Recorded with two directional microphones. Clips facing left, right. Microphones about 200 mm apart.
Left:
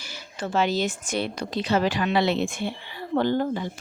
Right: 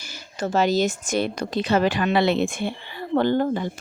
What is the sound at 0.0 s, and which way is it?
Speech, 45° right (ahead or behind).